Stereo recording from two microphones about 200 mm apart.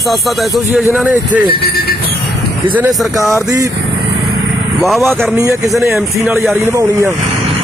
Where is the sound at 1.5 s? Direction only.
50° left (ahead or behind).